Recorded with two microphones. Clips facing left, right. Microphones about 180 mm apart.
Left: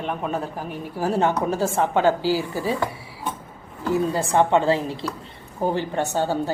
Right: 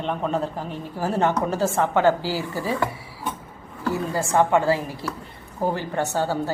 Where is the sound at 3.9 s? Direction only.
20° left (ahead or behind).